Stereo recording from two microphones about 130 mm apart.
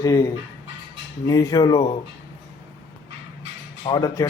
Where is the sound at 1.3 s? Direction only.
25° left (ahead or behind).